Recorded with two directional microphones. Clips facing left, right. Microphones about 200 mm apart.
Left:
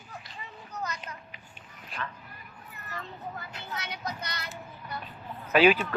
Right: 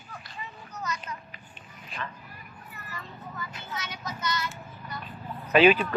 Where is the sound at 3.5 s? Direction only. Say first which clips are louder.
Even; 60° left (ahead or behind).